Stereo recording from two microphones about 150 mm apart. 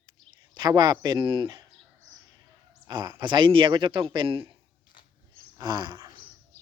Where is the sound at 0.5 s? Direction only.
25° right (ahead or behind).